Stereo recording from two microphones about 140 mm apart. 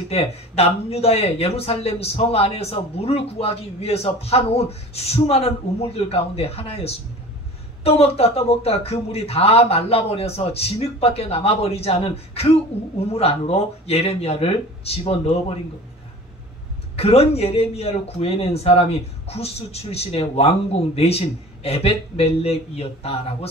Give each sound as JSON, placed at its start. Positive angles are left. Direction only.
{"t": 0.1, "sound": "speech", "side_deg": 45}
{"t": 16.9, "sound": "speech", "side_deg": 45}